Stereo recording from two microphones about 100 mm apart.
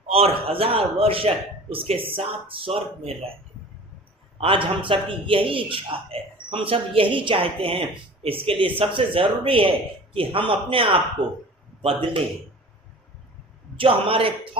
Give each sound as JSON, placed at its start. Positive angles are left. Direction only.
{"t": 0.1, "sound": "a man's voice", "side_deg": -80}
{"t": 4.4, "sound": "a man's voice", "side_deg": -60}
{"t": 13.7, "sound": "a man's voice", "side_deg": -65}